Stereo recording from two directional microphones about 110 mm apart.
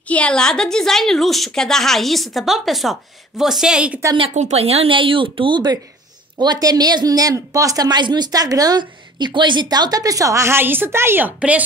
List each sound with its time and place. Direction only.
0.1 s a woman's voice: 10° left (ahead or behind); by 4.0 s 10° right (ahead or behind)
4.3 s speech: 90° right; by 5.6 s 50° right (ahead or behind)
6.3 s speech: 40° right (ahead or behind); by 11.6 s 15° right (ahead or behind)